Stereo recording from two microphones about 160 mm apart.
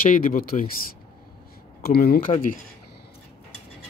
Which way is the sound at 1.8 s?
70° left (ahead or behind).